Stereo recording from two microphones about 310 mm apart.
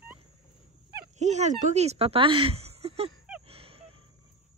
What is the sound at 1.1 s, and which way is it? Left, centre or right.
Speech, right.